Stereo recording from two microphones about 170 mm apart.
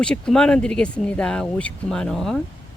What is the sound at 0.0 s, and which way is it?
Speech, 5° left (ahead or behind).